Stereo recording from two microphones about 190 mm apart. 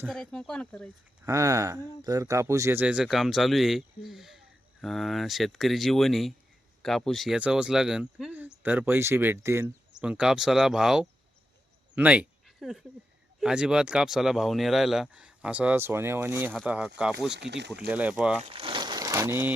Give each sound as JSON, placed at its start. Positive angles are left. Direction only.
{"t": 0.1, "sound": "speech", "side_deg": 5}
{"t": 1.2, "sound": "speech", "side_deg": -15}
{"t": 17.3, "sound": "speech", "side_deg": -65}
{"t": 17.7, "sound": "speech", "side_deg": -5}
{"t": 18.4, "sound": "a sound", "side_deg": -30}